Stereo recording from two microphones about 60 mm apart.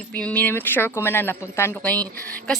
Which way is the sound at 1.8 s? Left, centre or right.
Left.